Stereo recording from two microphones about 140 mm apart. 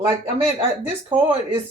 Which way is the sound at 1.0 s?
40° right (ahead or behind).